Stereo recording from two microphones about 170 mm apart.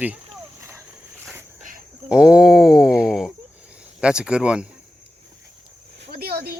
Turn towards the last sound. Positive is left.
turn(degrees=-65)  # may be behind; listen again after turning